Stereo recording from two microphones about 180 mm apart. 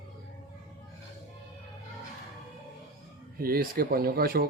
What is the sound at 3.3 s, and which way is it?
Speech, 55° right (ahead or behind).